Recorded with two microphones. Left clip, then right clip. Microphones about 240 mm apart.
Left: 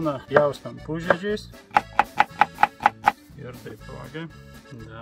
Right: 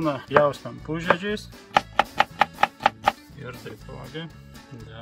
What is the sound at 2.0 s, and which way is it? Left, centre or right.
Music, centre.